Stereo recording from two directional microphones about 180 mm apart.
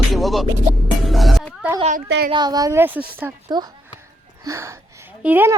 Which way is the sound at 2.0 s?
70° right (ahead or behind).